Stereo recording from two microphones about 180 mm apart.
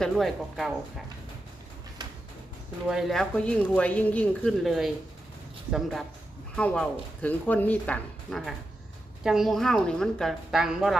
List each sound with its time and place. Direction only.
0.0 s speech: centre (ahead or behind)
2.8 s speech: centre (ahead or behind)